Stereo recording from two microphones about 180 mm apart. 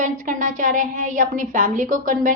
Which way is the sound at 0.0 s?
45° right (ahead or behind).